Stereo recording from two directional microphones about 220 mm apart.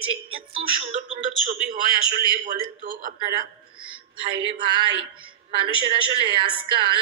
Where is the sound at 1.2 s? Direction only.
40° right (ahead or behind).